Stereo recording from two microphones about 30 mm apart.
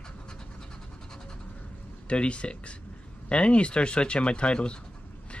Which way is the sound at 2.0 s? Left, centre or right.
Left.